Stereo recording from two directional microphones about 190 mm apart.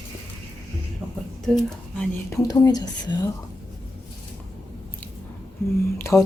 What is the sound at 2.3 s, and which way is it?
Speech, 20° left (ahead or behind).